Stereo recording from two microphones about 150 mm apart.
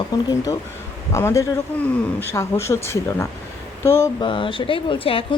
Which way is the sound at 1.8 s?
10° left (ahead or behind).